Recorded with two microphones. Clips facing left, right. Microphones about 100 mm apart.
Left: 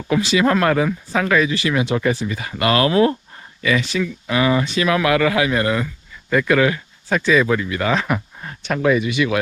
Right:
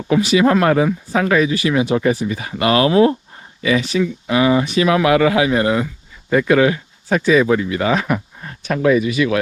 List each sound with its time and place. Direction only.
0.1 s speech: 35° right (ahead or behind)
7.1 s speech: 45° right (ahead or behind)